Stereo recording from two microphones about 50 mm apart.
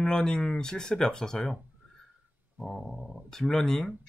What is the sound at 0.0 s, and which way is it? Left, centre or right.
Speech, centre.